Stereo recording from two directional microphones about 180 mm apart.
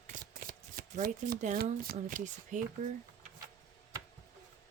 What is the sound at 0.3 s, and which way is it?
Speech, 50° right (ahead or behind).